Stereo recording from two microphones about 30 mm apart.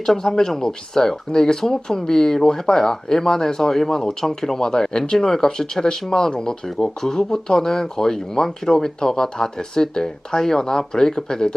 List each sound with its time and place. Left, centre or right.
0.0 s speech: centre
6.7 s speech: centre